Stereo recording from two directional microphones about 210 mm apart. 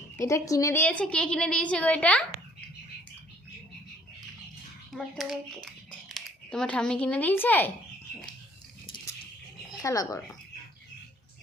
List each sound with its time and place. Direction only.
0.2 s a woman's voice: 15° left (ahead or behind)
4.9 s a child's voice: centre (ahead or behind)
9.8 s a woman's voice: 15° left (ahead or behind)